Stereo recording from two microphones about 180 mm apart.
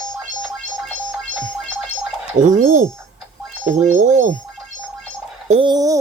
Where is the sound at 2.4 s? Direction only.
45° right (ahead or behind).